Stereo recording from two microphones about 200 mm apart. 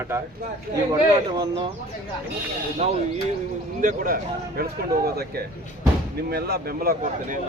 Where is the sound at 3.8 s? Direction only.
45° right (ahead or behind).